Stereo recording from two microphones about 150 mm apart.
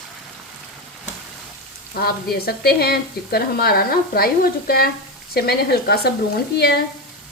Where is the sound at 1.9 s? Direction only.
90° left.